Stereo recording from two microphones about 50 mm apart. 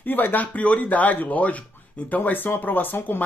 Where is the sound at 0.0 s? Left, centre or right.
Left.